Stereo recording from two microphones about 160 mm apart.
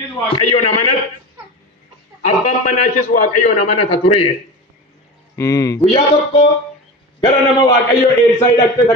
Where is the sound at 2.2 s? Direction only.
50° left (ahead or behind).